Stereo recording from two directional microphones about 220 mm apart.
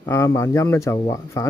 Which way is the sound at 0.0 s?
15° left (ahead or behind).